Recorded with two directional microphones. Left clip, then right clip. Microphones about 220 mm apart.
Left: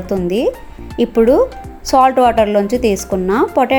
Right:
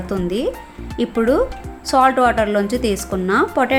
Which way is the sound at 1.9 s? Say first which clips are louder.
Left 4 dB; 15° left (ahead or behind).